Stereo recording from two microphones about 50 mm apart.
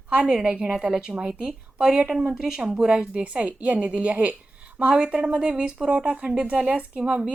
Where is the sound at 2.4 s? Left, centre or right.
Centre.